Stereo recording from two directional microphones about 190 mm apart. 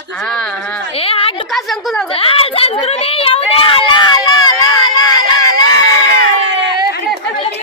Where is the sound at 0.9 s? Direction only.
30° left (ahead or behind).